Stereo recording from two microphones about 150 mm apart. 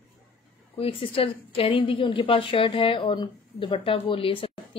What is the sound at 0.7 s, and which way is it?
A woman's voice, 40° left (ahead or behind).